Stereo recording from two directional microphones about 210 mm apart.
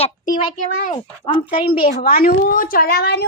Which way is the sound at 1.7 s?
45° left (ahead or behind).